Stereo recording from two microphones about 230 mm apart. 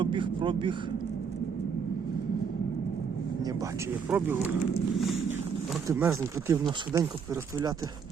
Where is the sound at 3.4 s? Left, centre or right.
Centre.